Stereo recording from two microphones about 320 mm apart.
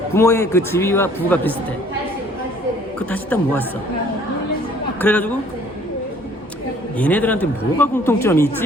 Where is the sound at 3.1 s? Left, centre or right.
Centre.